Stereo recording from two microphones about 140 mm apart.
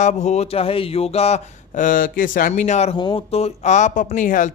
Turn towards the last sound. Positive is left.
turn(degrees=70)  # may be behind; listen again after turning